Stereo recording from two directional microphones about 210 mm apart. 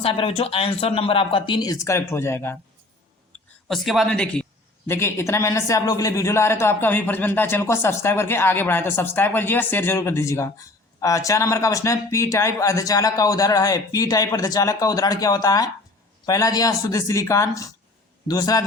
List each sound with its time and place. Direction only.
0.0 s speech: 25° left (ahead or behind)
3.7 s speech: centre (ahead or behind); by 18.6 s 15° left (ahead or behind)